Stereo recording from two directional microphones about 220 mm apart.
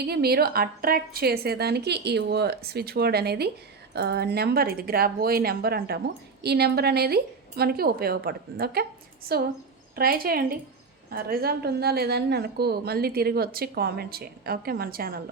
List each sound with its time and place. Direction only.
0.0 s a woman's voice: 45° right (ahead or behind)